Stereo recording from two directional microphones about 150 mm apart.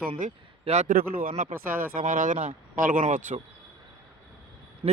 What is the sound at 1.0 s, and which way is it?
Speech, 70° right (ahead or behind).